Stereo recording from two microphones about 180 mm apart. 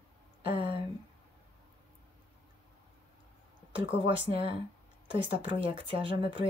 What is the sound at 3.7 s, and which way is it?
Speech, 30° right (ahead or behind).